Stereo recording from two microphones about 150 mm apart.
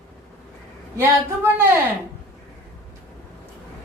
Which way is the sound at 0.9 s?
15° right (ahead or behind).